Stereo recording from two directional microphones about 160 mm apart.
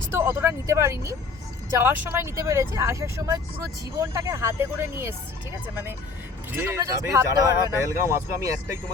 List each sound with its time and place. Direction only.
0.1 s speech: 15° right (ahead or behind)
6.5 s speech: 15° right (ahead or behind)